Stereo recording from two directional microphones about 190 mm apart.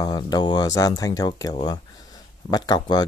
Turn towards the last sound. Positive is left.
turn(degrees=20)  # may be behind; listen again after turning